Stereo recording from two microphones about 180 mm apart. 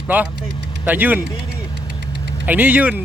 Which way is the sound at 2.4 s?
10° right (ahead or behind).